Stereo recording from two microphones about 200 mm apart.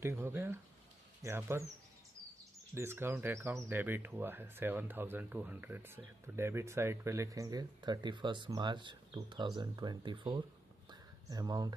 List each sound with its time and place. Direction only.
0.0 s speech: 10° right (ahead or behind)
2.7 s speech: 10° right (ahead or behind)
10.9 s a sound: 20° right (ahead or behind)